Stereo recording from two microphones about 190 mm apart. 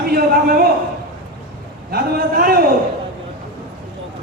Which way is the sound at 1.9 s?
55° right (ahead or behind).